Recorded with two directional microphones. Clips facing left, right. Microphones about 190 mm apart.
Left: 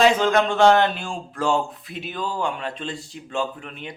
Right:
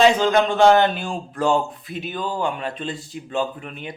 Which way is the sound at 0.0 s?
Centre (ahead or behind).